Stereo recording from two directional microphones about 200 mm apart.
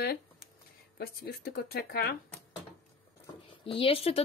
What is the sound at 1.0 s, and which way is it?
Speech, 50° left (ahead or behind).